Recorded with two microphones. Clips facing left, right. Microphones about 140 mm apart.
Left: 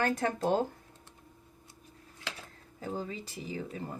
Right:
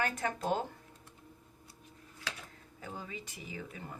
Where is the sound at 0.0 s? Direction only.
35° left (ahead or behind).